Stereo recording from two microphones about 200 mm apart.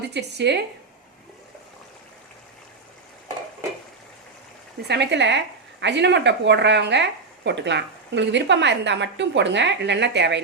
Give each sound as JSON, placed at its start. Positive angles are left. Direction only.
{"t": 0.0, "sound": "speech", "side_deg": -55}
{"t": 4.9, "sound": "speech", "side_deg": -60}